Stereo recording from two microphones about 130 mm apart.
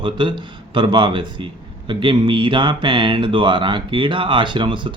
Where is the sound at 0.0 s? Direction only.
35° right (ahead or behind).